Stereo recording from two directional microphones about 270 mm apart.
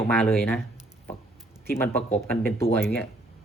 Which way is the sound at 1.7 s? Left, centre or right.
Centre.